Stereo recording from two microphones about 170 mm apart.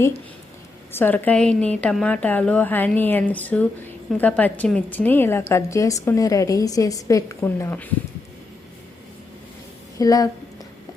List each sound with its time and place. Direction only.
0.9 s a woman's voice: 10° left (ahead or behind)
10.0 s speech: 20° left (ahead or behind)